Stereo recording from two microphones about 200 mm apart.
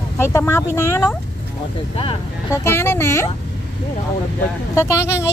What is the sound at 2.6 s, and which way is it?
Speech, 10° left (ahead or behind).